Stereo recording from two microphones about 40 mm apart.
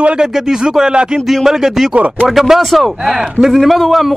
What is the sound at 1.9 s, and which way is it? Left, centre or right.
Speech, right.